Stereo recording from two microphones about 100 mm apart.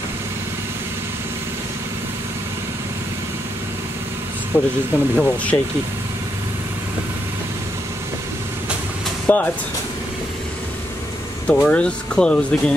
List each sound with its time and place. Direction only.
4.5 s speech: 25° left (ahead or behind)
9.3 s speech: 20° left (ahead or behind)
11.4 s speech: 15° left (ahead or behind)